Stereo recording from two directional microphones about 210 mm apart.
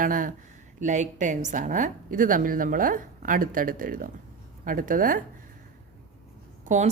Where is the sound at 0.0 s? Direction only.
40° right (ahead or behind).